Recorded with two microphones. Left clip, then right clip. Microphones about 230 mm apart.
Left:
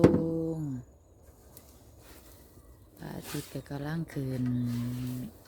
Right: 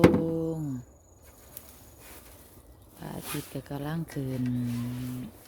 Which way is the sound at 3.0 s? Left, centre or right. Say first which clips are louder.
Right 2 dB; centre.